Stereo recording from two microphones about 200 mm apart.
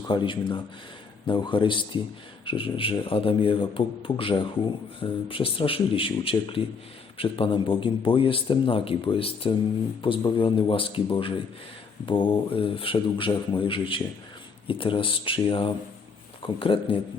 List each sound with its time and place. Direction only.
0.1 s a man's voice: 25° left (ahead or behind)